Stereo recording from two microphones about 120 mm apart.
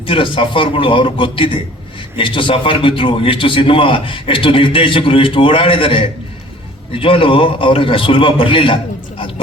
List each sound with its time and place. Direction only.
0.0 s a man's voice: 45° left (ahead or behind)